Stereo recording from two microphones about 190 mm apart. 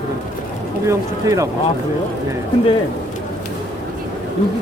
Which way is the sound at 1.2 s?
15° right (ahead or behind).